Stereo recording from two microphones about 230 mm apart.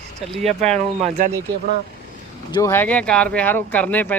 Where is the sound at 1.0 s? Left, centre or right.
Right.